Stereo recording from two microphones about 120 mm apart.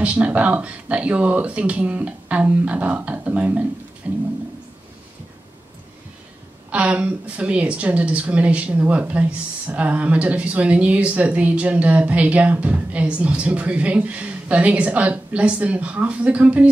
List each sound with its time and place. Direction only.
0.0 s a woman's voice: 10° right (ahead or behind)
6.7 s a woman's voice: 10° right (ahead or behind)